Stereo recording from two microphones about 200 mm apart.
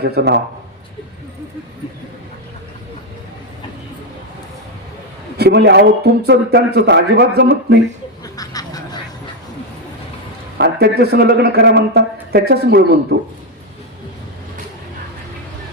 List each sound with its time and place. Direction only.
0.0 s speech: 55° right (ahead or behind)
5.4 s speech: 55° right (ahead or behind)
8.2 s duck: 15° left (ahead or behind)
10.6 s speech: 55° right (ahead or behind)